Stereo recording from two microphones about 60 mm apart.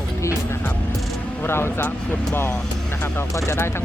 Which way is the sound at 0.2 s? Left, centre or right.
Left.